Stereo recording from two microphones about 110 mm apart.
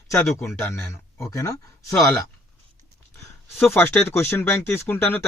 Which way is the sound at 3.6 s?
20° left (ahead or behind).